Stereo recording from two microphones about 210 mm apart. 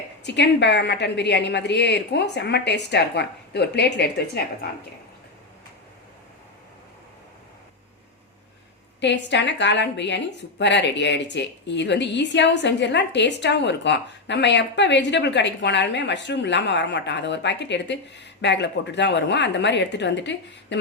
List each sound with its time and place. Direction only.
0.3 s a woman's voice: 55° left (ahead or behind)
9.0 s a woman's voice: 55° left (ahead or behind)